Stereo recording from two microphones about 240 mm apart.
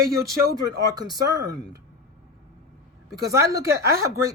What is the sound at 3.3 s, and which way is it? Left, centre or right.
Speech, centre.